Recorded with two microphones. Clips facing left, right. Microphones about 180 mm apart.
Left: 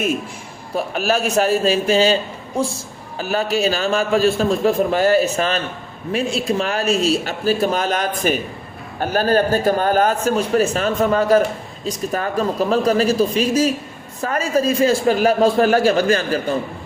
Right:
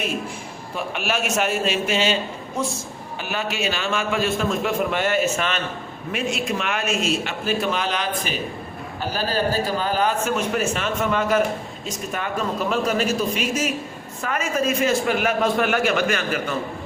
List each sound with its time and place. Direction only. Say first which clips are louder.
0.8 s a man's voice: left 6 dB; 35° left (ahead or behind)